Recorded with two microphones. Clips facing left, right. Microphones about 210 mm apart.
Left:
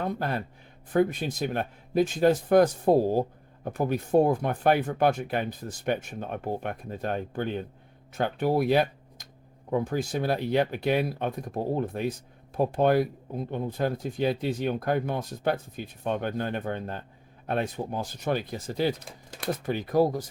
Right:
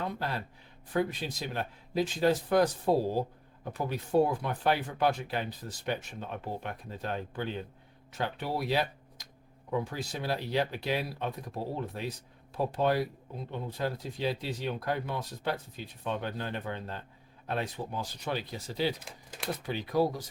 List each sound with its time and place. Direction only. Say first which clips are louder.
0.0 s a man's voice: left 5 dB; 50° left (ahead or behind)